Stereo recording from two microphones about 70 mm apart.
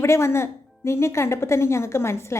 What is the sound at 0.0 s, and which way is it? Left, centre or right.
A woman's voice, left.